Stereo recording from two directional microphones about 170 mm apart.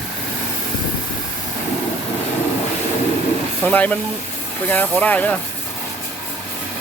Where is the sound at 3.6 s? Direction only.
10° left (ahead or behind).